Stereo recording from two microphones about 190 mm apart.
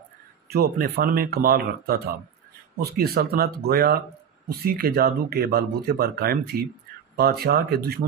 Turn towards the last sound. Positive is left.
turn(degrees=-55)  # may be behind; listen again after turning